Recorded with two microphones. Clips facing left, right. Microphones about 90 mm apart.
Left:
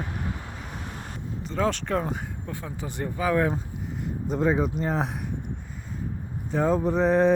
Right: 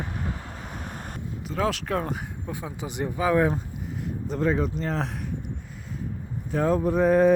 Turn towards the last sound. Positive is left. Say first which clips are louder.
# right 1 dB
turn(degrees=-5)  # may be behind; listen again after turning